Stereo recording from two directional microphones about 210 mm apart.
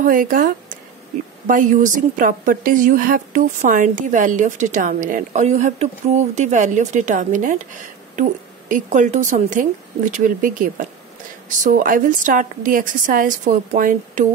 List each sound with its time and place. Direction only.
0.0 s a woman's voice: 40° right (ahead or behind)
1.5 s a woman's voice: 40° right (ahead or behind)